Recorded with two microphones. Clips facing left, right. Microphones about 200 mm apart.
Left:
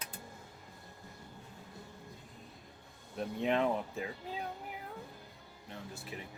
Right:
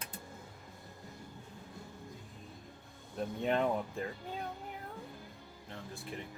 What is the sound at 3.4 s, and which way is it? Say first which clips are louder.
Speech: left 1 dB; centre (ahead or behind).